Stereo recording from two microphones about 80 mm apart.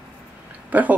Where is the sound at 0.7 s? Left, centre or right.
Right.